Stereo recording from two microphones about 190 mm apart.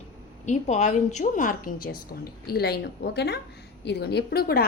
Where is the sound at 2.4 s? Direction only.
55° left (ahead or behind).